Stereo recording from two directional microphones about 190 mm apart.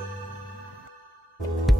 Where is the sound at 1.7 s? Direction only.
Centre (ahead or behind).